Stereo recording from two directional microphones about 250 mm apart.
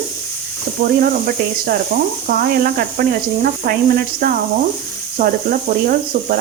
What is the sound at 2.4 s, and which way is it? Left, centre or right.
Speech, right.